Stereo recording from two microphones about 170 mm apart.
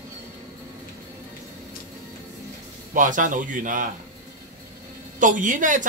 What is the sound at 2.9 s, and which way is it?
Speech, 50° right (ahead or behind).